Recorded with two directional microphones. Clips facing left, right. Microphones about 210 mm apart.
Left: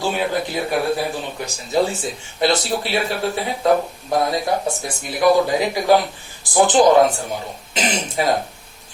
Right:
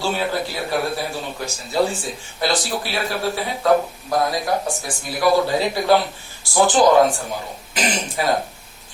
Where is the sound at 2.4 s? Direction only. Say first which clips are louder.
Left 3 dB; 25° left (ahead or behind).